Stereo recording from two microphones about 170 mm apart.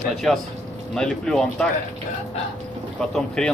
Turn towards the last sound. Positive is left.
turn(degrees=5)  # may be behind; listen again after turning